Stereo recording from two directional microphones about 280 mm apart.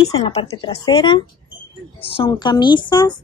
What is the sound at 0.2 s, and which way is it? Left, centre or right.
A woman's voice, centre.